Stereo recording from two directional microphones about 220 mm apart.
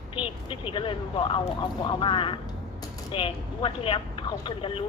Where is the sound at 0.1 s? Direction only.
25° left (ahead or behind).